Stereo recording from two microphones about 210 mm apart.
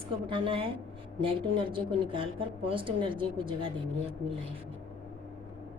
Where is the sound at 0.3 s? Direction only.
25° right (ahead or behind).